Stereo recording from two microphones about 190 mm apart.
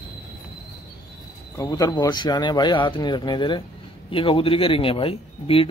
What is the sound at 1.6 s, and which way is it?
Speech, 20° left (ahead or behind).